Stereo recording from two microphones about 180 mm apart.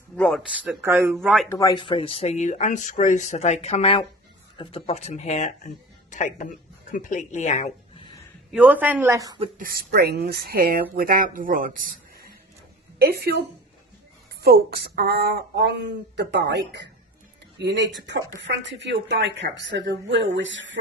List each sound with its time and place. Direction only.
0.2 s speech: 5° left (ahead or behind)
0.5 s speech: 5° right (ahead or behind)
1.2 s speech: centre (ahead or behind)
1.5 s speech: 20° left (ahead or behind); by 7.7 s 40° left (ahead or behind)
8.5 s speech: 10° right (ahead or behind)
9.6 s speech: 55° right (ahead or behind)
14.4 s speech: 60° right (ahead or behind); by 17.8 s 75° right (ahead or behind)
18.4 s speech: 90° right